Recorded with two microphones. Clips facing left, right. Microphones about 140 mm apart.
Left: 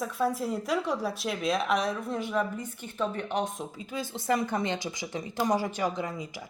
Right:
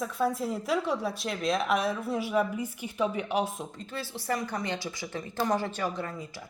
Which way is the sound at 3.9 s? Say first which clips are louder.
Left 4 dB; 15° left (ahead or behind).